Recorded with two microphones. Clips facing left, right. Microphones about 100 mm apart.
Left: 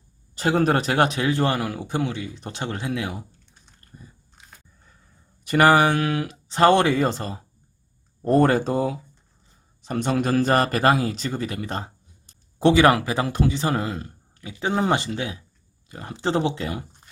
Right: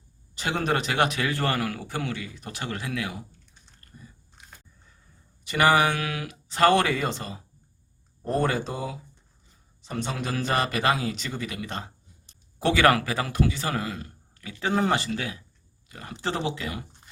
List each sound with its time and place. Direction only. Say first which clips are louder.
0.3 s a man's voice: left 6 dB; 40° left (ahead or behind)
5.5 s speech: left 5 dB; 45° left (ahead or behind)
5.7 s a man's voice: left 4 dB; 30° left (ahead or behind)